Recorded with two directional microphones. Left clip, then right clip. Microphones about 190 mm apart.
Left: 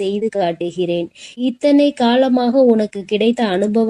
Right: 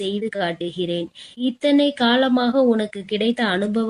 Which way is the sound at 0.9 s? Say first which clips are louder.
Left 5 dB; 45° left (ahead or behind).